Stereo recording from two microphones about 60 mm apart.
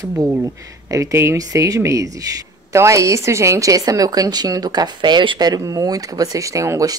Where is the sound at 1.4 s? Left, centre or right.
Right.